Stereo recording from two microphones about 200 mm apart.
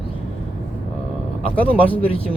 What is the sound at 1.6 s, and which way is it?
Speech, 25° left (ahead or behind).